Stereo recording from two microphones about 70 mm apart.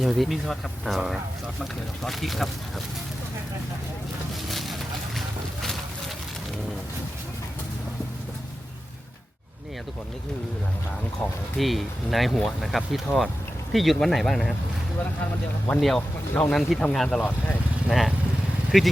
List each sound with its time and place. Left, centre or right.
0.0 s speech: centre
4.4 s vehicle: centre
11.2 s speech: centre
11.5 s speech: centre
15.8 s speech: centre
17.2 s speech: left
17.8 s speech: centre